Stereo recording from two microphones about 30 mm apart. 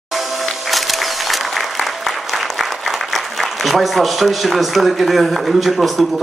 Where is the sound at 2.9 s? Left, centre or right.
Centre.